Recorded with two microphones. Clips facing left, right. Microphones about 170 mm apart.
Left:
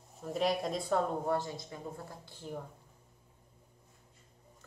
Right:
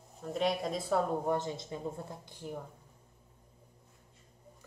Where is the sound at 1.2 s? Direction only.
20° right (ahead or behind).